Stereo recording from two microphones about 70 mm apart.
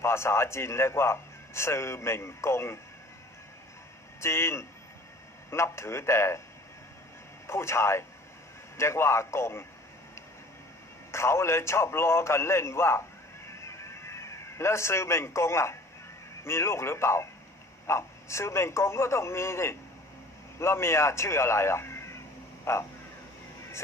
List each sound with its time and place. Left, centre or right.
0.0 s a man's voice: left
4.2 s a man's voice: left
7.4 s a man's voice: left
11.1 s a man's voice: left
13.4 s a sound: left
16.4 s a man's voice: left